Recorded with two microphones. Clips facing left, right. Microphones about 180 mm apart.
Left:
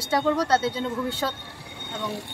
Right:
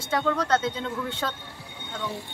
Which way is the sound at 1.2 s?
20° left (ahead or behind).